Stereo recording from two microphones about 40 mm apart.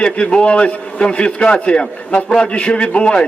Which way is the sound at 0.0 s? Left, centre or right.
Left.